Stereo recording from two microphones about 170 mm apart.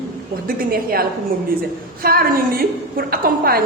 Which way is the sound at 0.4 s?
60° right (ahead or behind).